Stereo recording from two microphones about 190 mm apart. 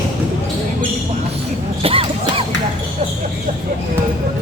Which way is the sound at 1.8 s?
30° right (ahead or behind).